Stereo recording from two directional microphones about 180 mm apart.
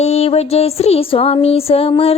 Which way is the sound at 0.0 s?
35° left (ahead or behind).